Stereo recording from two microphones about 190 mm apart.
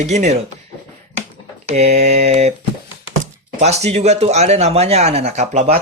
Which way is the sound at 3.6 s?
35° right (ahead or behind).